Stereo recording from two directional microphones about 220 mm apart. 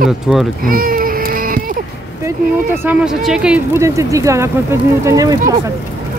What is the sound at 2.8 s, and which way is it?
Speech, 5° right (ahead or behind).